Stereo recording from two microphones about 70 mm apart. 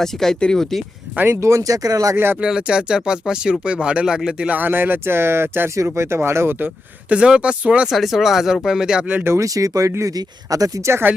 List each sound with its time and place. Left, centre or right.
0.0 s speech: centre
1.1 s speech: right
1.4 s speech: right
2.1 s speech: right
2.4 s speech: centre; by 6.7 s right
7.1 s speech: centre
7.9 s speech: centre
9.2 s speech: right